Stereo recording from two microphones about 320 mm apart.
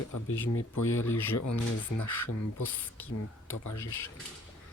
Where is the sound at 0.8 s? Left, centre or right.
Left.